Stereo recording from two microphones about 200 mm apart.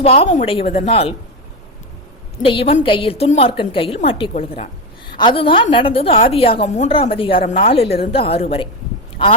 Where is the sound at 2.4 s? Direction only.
25° left (ahead or behind).